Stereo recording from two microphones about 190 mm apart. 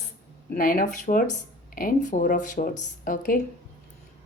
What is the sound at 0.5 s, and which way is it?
Speech, 45° left (ahead or behind).